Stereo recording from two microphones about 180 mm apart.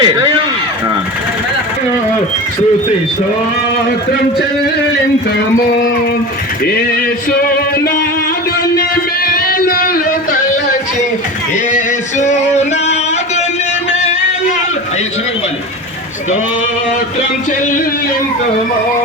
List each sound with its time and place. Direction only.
0.0 s speech: 25° right (ahead or behind)
7.3 s music: 55° left (ahead or behind)
9.2 s music: 55° left (ahead or behind)
12.2 s music: 40° left (ahead or behind)